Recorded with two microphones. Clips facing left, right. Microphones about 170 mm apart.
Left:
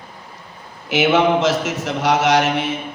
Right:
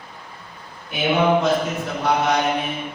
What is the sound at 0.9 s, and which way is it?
Mantra, 90° left.